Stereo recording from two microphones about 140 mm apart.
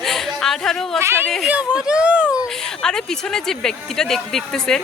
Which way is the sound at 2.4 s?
5° left (ahead or behind).